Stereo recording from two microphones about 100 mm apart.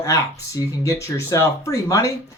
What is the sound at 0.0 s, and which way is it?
Speech, 35° left (ahead or behind).